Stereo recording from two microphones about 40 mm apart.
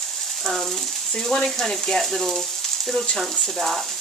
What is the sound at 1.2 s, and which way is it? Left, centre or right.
Speech, centre.